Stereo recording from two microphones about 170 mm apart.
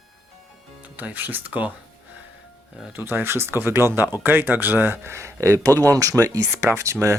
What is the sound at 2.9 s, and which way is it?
Speech, 10° right (ahead or behind).